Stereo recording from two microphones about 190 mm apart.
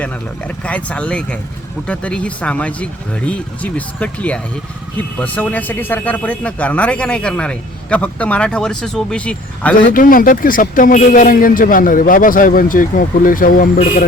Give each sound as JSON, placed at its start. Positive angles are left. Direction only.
{"t": 0.0, "sound": "speech", "side_deg": 5}
{"t": 9.7, "sound": "speech", "side_deg": 50}